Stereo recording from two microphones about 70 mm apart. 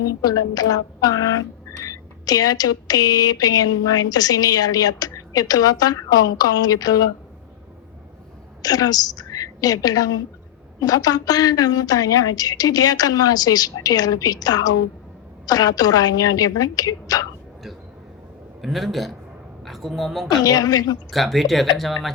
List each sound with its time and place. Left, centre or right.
0.2 s speech: left
8.6 s a woman's voice: left
18.6 s a woman's voice: centre
20.4 s speech: left
21.1 s speech: centre